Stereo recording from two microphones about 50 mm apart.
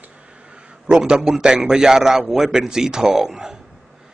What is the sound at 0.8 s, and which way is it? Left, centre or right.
A man's voice, centre.